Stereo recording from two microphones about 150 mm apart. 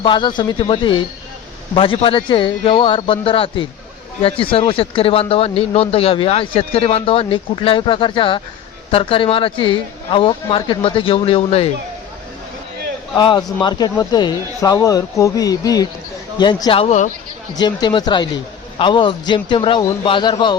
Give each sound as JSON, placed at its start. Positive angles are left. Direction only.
{"t": 0.0, "sound": "speech", "side_deg": 30}
{"t": 13.1, "sound": "speech", "side_deg": 30}
{"t": 17.5, "sound": "speech", "side_deg": 30}